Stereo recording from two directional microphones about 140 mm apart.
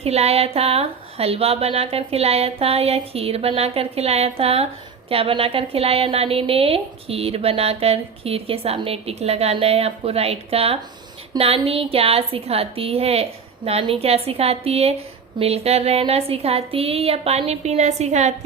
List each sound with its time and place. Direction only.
0.0 s speech: 50° right (ahead or behind)